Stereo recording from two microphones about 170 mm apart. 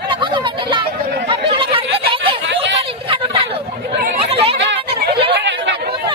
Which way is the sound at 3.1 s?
30° right (ahead or behind).